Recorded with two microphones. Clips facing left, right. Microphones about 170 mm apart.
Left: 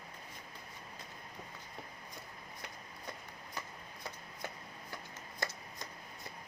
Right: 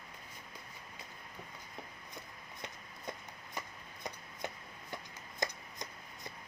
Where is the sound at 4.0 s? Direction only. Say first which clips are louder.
Right 3 dB; 20° right (ahead or behind).